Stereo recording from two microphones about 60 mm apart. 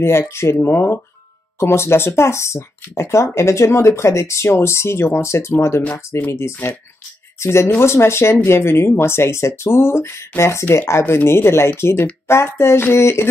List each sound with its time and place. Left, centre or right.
0.0 s speech: left